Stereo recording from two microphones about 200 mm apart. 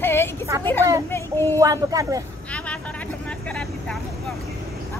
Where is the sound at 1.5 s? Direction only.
15° right (ahead or behind).